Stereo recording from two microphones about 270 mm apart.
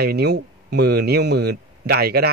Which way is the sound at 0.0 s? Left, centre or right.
Right.